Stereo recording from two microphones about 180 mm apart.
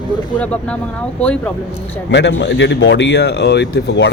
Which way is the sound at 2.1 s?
75° left (ahead or behind).